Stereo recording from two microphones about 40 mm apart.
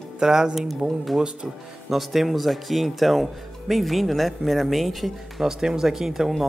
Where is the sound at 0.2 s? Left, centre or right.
Centre.